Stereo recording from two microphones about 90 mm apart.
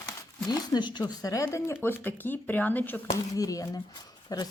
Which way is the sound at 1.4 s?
30° left (ahead or behind).